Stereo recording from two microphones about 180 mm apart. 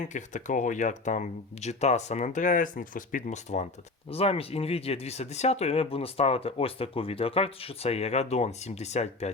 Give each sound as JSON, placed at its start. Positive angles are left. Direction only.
{"t": 0.0, "sound": "speech", "side_deg": 45}